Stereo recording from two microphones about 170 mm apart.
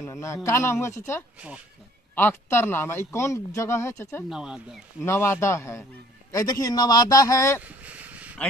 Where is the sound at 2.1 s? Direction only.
15° left (ahead or behind).